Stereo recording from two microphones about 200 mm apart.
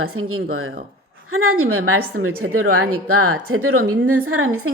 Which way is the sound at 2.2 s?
90° right.